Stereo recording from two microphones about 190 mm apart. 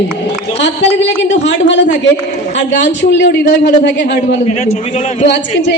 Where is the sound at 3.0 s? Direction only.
65° left (ahead or behind).